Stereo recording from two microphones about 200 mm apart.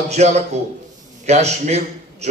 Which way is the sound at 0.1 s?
35° right (ahead or behind).